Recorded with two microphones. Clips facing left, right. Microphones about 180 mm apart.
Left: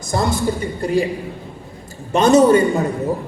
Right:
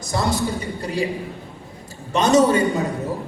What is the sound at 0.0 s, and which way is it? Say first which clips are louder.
Speech: left 3 dB; 50° left (ahead or behind).